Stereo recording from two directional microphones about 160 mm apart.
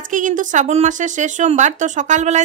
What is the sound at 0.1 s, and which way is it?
A woman's voice, 55° right (ahead or behind).